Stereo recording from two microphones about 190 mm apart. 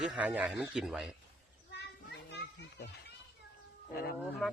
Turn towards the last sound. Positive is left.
turn(degrees=50)  # may be behind; listen again after turning